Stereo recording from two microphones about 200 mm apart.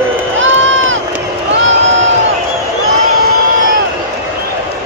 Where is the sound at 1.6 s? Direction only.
70° right (ahead or behind).